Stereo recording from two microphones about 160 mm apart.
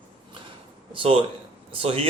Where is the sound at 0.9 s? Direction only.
30° right (ahead or behind).